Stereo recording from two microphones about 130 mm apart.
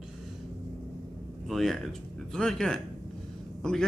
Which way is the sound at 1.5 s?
Centre (ahead or behind).